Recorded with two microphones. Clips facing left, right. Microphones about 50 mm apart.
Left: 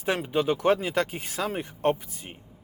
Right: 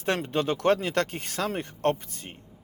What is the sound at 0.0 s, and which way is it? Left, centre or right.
Speech, centre.